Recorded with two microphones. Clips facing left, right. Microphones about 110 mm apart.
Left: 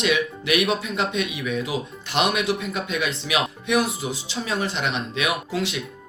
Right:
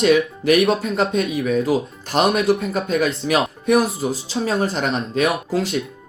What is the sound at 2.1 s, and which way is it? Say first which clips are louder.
Speech: right 6 dB; 35° right (ahead or behind).